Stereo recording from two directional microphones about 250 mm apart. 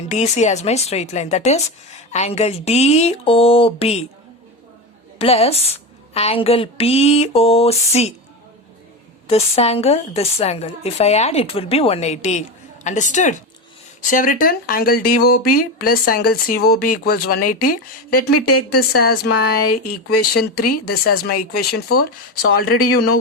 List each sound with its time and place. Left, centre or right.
0.1 s speech: left
5.2 s speech: left
9.3 s speech: left